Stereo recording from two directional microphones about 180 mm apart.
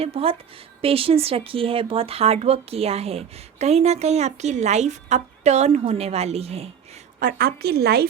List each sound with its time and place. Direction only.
0.0 s speech: 35° right (ahead or behind)
7.2 s a woman's voice: 55° right (ahead or behind)